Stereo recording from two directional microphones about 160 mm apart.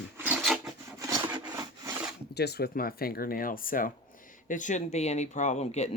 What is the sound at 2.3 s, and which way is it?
Speech, 90° left.